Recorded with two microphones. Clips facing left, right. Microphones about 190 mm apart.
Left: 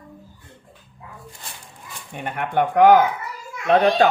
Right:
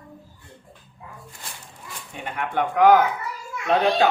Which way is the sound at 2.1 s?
55° left (ahead or behind).